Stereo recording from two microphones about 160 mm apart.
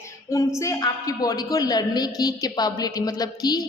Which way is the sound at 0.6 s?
20° left (ahead or behind).